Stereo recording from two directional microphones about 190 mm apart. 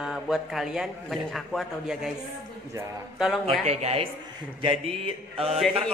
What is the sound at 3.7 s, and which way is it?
Mantra, 35° right (ahead or behind).